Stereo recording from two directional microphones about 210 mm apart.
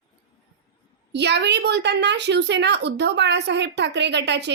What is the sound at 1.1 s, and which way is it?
A woman's voice, 55° right (ahead or behind).